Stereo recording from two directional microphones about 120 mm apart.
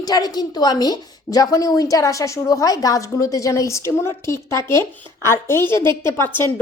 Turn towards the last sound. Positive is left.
turn(degrees=20)  # may be behind; listen again after turning